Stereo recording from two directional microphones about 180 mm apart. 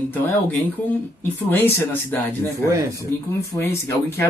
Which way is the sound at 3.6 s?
15° left (ahead or behind).